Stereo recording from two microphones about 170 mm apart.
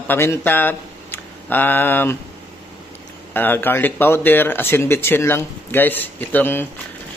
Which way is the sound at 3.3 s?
10° left (ahead or behind).